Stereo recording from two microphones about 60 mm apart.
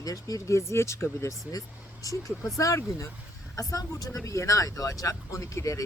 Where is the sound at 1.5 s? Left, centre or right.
Left.